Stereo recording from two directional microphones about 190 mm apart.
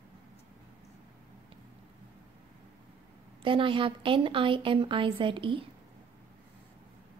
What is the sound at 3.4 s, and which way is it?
A woman's voice, 25° right (ahead or behind).